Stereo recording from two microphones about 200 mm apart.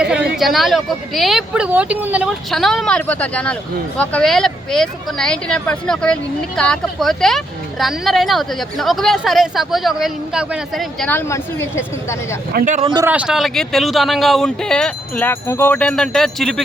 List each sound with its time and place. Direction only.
0.0 s a sound: 5° right (ahead or behind)
0.3 s speech: centre (ahead or behind)
12.5 s a man's voice: 40° right (ahead or behind)
12.8 s speech: 20° right (ahead or behind)
13.1 s speech: 5° right (ahead or behind)